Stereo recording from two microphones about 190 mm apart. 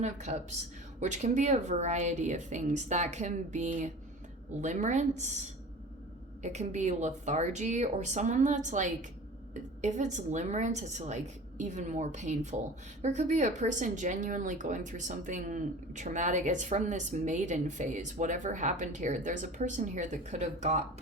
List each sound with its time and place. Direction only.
0.0 s speech: 35° right (ahead or behind)
6.4 s speech: 35° right (ahead or behind)